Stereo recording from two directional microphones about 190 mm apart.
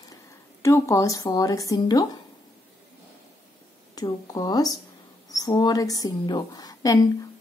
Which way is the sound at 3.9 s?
20° left (ahead or behind).